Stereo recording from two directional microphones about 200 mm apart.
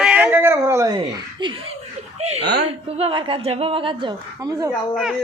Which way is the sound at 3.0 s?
25° right (ahead or behind).